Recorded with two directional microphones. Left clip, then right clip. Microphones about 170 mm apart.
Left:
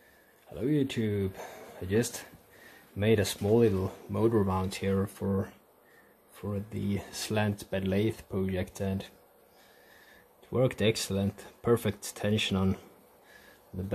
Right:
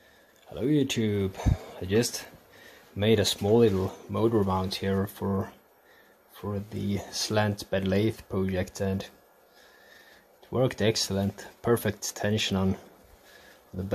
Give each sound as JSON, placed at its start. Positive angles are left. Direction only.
{"t": 0.5, "sound": "speech", "side_deg": -15}
{"t": 10.5, "sound": "speech", "side_deg": -5}